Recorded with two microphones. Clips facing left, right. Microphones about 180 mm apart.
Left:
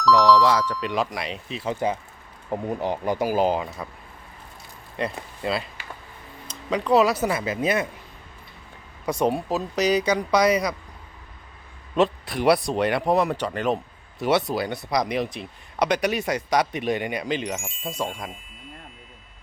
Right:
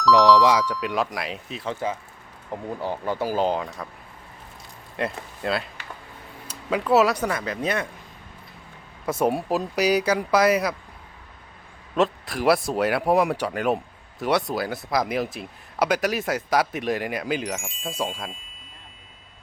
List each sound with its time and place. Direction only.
0.3 s speech: 15° right (ahead or behind)
1.6 s speech: 15° left (ahead or behind)
4.9 s speech: centre (ahead or behind)
9.0 s speech: 5° right (ahead or behind)
11.9 s speech: centre (ahead or behind)